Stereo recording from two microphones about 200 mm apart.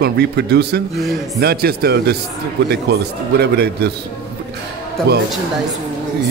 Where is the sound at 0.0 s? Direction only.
55° right (ahead or behind).